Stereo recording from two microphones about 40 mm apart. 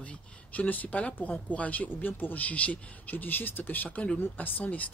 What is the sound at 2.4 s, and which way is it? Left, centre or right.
Speech, left.